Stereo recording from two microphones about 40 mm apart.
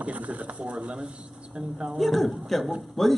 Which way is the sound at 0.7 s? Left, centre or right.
Right.